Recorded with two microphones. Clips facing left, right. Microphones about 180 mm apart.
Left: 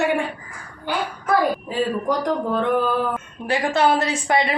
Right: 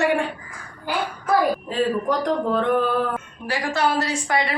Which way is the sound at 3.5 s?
20° left (ahead or behind).